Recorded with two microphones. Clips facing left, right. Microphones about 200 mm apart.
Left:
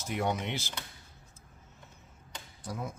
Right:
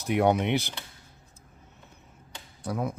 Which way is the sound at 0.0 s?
60° right (ahead or behind).